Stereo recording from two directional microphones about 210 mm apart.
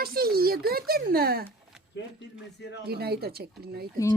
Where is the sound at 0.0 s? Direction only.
45° right (ahead or behind).